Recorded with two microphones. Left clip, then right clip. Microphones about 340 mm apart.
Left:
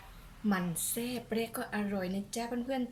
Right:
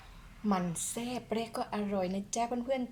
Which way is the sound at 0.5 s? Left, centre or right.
Centre.